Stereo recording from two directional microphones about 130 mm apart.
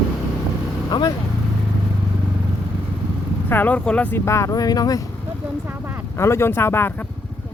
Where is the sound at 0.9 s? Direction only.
35° left (ahead or behind).